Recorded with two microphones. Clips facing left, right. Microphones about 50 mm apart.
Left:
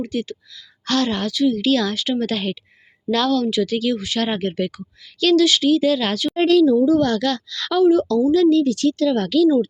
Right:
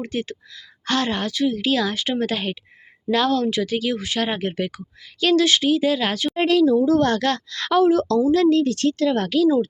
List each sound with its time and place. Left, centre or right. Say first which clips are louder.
0.0 s a woman's voice: left 2 dB; right
2.3 s a woman's voice: left 2 dB; centre
4.2 s a woman's voice: left 1 dB; centre; by 6.8 s right
6.8 s speech: left 1 dB; right
7.9 s speech: left 2 dB; right